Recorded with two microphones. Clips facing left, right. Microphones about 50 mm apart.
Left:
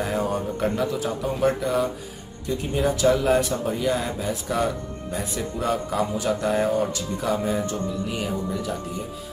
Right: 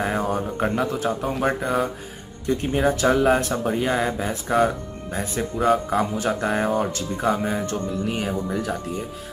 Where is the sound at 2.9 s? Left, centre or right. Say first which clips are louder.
Even; right.